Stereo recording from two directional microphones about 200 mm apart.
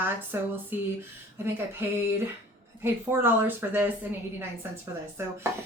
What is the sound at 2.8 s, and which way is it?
Speech, 10° right (ahead or behind).